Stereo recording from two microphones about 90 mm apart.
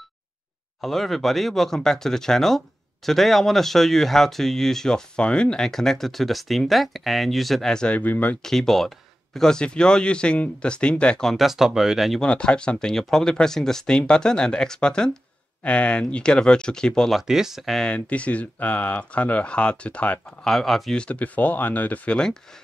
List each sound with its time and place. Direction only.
0.7 s speech: centre (ahead or behind); by 8.4 s 20° left (ahead or behind)
8.4 s speech: 5° left (ahead or behind)
12.2 s speech: 10° left (ahead or behind)
17.3 s speech: 5° right (ahead or behind)
17.9 s speech: 15° left (ahead or behind)
20.4 s speech: centre (ahead or behind)
21.0 s speech: 15° left (ahead or behind)